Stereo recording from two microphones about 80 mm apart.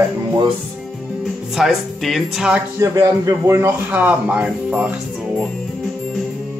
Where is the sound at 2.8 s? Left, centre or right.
Right.